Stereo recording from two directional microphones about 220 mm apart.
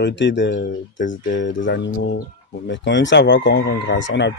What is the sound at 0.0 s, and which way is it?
Speech, 55° left (ahead or behind).